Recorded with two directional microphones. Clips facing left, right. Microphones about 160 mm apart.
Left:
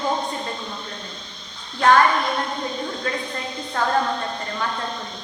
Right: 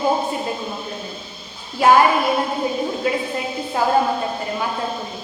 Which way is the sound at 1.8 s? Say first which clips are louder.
Right 3 dB; 10° right (ahead or behind).